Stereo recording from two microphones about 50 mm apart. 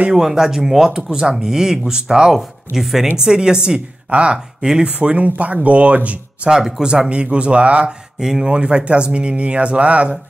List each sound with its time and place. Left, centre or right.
0.1 s speech: centre
4.9 s speech: right
6.5 s speech: centre
8.2 s speech: centre
8.5 s speech: right